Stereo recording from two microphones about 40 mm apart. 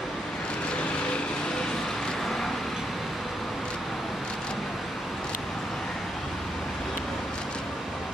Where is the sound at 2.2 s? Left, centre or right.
Centre.